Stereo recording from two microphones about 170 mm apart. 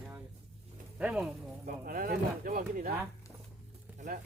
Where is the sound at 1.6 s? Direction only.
55° right (ahead or behind).